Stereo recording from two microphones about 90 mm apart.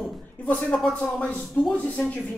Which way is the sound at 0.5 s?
15° left (ahead or behind).